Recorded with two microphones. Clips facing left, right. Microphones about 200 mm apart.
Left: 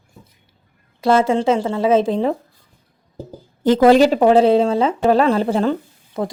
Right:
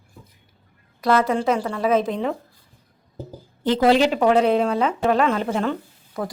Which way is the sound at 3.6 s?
45° left (ahead or behind).